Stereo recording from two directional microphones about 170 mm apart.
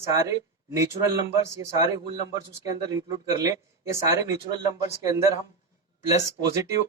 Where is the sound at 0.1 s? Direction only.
20° right (ahead or behind).